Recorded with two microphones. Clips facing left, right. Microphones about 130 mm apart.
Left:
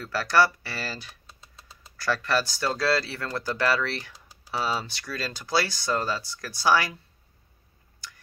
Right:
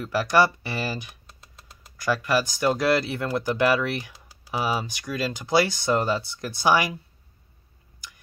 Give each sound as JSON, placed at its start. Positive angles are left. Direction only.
{"t": 0.0, "sound": "speech", "side_deg": -15}